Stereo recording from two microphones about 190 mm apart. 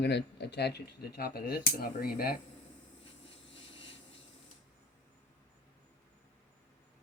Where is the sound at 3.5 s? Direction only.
30° left (ahead or behind).